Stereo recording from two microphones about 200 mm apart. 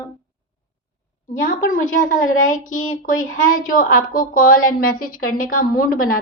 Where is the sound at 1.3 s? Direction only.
40° left (ahead or behind).